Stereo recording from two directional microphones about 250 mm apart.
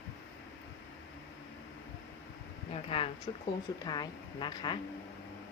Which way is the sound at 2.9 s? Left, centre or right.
Left.